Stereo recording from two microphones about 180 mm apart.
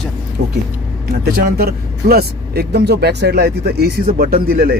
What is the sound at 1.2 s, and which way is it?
Speech, 60° right (ahead or behind).